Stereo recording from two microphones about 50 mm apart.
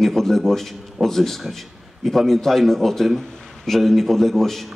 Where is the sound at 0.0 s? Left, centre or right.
Centre.